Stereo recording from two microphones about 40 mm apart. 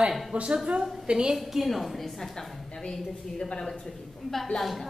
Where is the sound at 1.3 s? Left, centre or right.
Centre.